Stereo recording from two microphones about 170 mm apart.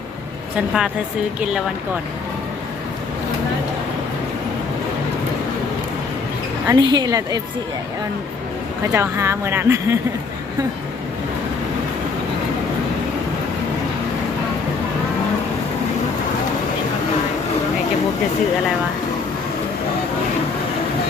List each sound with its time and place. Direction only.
0.5 s speech: 5° right (ahead or behind)
6.7 s speech: 25° right (ahead or behind)
8.9 s speech: 15° right (ahead or behind)